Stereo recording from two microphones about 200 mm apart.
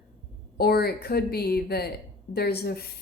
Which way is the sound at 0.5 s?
50° left (ahead or behind).